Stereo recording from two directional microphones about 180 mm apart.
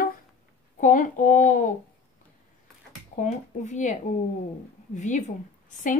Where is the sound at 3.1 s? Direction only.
40° left (ahead or behind).